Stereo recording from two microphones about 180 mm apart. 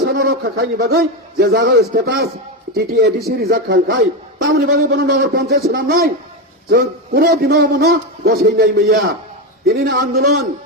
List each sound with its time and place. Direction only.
0.0 s a man's voice: 55° right (ahead or behind)
4.4 s speech: 75° right (ahead or behind)
5.1 s a man's voice: 55° right (ahead or behind)